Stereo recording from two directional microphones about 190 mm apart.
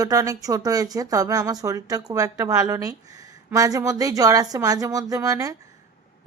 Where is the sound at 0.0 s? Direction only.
20° right (ahead or behind).